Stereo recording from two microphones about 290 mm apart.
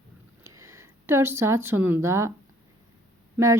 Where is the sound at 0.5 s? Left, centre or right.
Centre.